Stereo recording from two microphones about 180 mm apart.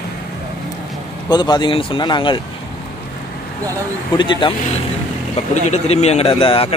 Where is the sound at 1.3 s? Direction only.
25° left (ahead or behind).